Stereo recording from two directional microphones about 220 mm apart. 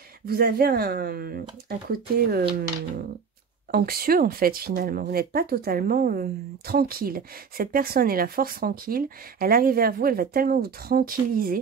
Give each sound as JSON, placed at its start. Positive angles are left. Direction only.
{"t": 0.2, "sound": "speech", "side_deg": -45}
{"t": 3.7, "sound": "speech", "side_deg": -45}